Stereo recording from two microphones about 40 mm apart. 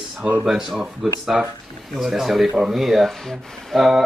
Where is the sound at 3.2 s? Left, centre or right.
Centre.